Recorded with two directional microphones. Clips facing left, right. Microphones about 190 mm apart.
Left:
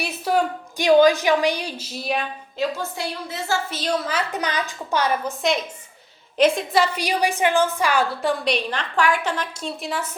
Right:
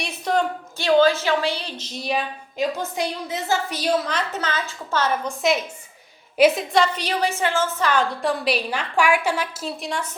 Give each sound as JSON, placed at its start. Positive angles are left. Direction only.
{"t": 0.0, "sound": "a woman's voice", "side_deg": 5}
{"t": 2.6, "sound": "a woman's voice", "side_deg": -20}
{"t": 4.0, "sound": "a woman's voice", "side_deg": 10}
{"t": 5.4, "sound": "a woman's voice", "side_deg": 0}
{"t": 6.7, "sound": "a woman's voice", "side_deg": 10}